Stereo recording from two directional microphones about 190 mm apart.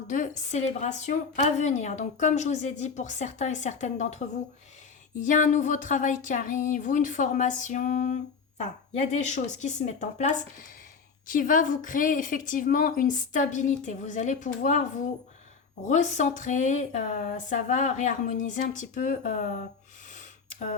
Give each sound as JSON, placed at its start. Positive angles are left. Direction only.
{"t": 0.1, "sound": "speech", "side_deg": 40}
{"t": 5.2, "sound": "a woman's voice", "side_deg": 40}